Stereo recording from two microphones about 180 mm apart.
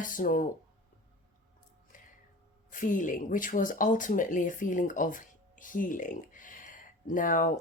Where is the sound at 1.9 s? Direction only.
45° left (ahead or behind).